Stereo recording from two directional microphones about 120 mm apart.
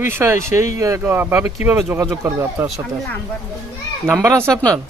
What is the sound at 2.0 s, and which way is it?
Speech, 25° right (ahead or behind).